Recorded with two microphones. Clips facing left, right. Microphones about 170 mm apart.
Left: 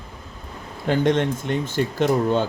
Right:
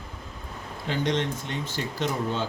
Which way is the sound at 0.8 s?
50° left (ahead or behind).